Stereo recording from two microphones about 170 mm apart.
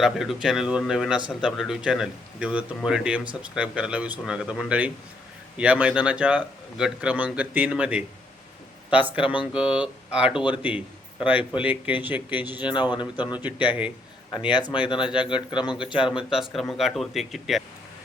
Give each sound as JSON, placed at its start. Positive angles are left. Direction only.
{"t": 0.0, "sound": "a man's voice", "side_deg": 0}
{"t": 12.6, "sound": "speech", "side_deg": 25}
{"t": 13.7, "sound": "a man's voice", "side_deg": -10}
{"t": 14.5, "sound": "speech", "side_deg": 25}
{"t": 16.0, "sound": "speech", "side_deg": -5}